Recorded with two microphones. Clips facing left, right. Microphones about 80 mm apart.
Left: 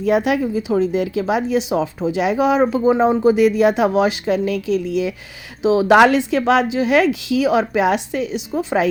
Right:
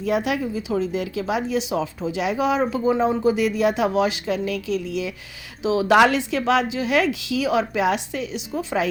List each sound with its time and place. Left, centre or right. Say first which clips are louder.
0.0 s speech: left 6 dB; left